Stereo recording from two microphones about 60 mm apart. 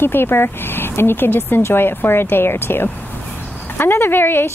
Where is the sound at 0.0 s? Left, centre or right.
Left.